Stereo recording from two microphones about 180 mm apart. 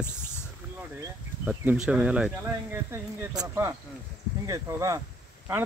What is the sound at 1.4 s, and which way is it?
Speech, 10° right (ahead or behind).